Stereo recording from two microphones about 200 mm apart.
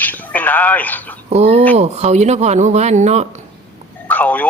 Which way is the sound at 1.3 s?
30° right (ahead or behind).